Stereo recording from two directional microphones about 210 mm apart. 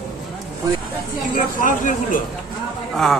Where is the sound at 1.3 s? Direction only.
40° left (ahead or behind).